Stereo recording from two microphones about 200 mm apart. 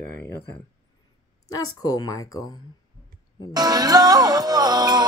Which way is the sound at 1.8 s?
15° left (ahead or behind).